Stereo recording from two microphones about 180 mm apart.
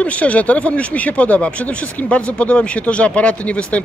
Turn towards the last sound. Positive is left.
turn(degrees=5)  # may be behind; listen again after turning